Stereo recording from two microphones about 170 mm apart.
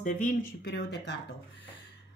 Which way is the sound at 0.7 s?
85° left.